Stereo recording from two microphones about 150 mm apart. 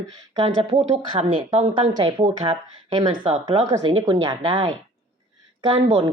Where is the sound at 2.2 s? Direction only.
45° right (ahead or behind).